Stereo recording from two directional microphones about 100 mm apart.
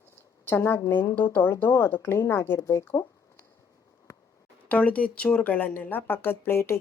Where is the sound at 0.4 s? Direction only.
20° left (ahead or behind).